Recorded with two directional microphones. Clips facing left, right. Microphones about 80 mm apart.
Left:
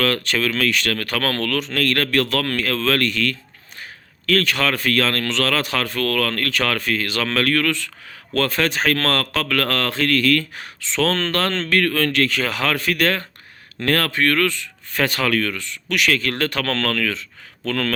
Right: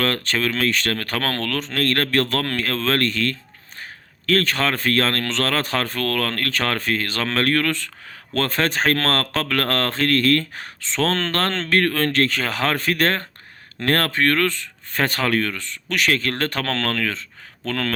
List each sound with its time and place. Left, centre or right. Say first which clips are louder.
0.0 s speech: left 1 dB; right